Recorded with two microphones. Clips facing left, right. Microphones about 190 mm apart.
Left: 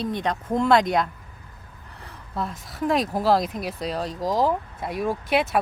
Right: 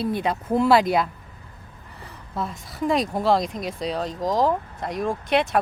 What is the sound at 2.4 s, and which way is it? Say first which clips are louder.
Speech: even; centre (ahead or behind).